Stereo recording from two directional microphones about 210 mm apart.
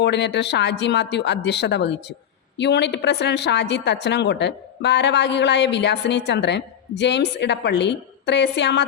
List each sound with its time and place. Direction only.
0.0 s a woman's voice: 55° left (ahead or behind)